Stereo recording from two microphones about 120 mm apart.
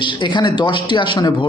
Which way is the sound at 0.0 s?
40° left (ahead or behind).